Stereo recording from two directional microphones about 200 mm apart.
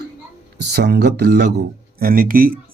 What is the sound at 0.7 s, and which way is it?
Speech, 55° right (ahead or behind).